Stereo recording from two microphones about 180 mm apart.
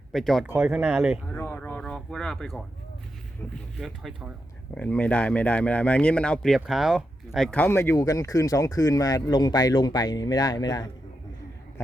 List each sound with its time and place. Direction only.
0.1 s speech: centre (ahead or behind)
1.3 s a sound: 10° left (ahead or behind)
3.5 s speech: centre (ahead or behind); by 10.9 s 20° left (ahead or behind)